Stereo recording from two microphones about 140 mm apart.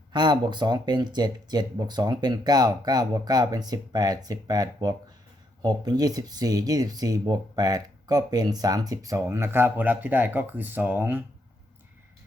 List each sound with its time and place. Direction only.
0.1 s speech: 30° right (ahead or behind); by 11.2 s 15° right (ahead or behind)